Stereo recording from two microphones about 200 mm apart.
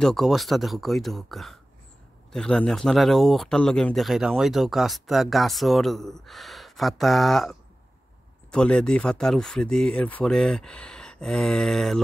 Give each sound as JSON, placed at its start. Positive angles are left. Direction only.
{"t": 0.0, "sound": "speech", "side_deg": 0}